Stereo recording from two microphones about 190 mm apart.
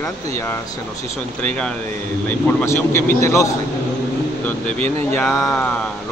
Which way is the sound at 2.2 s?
10° left (ahead or behind).